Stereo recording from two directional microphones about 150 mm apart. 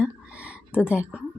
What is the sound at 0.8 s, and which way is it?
Speech, 10° right (ahead or behind).